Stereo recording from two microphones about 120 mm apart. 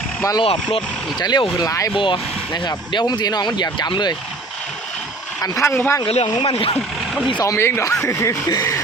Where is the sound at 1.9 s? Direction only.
40° left (ahead or behind).